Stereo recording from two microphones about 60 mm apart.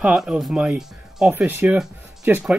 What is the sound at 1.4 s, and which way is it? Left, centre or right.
Speech, right.